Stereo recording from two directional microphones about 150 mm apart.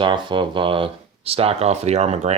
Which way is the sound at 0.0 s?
30° right (ahead or behind).